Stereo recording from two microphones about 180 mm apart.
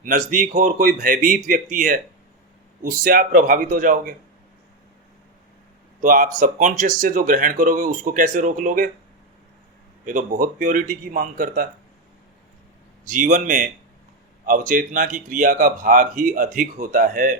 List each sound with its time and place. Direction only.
0.3 s speech: 45° right (ahead or behind)
6.0 s speech: 50° right (ahead or behind)
10.1 s speech: 50° right (ahead or behind)
13.1 s speech: 45° right (ahead or behind)